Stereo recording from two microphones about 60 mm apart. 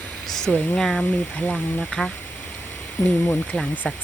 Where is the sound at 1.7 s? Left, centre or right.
Centre.